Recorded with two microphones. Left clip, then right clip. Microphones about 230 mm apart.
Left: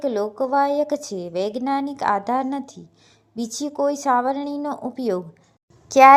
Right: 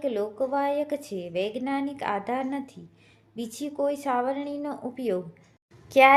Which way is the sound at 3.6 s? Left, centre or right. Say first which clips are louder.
Left 5 dB; left.